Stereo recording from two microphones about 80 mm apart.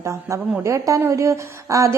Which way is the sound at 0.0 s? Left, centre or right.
Right.